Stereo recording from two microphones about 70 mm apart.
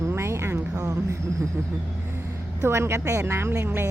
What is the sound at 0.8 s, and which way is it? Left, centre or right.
Speech, right.